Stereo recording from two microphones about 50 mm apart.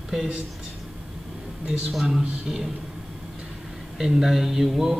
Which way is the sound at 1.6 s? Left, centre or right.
Centre.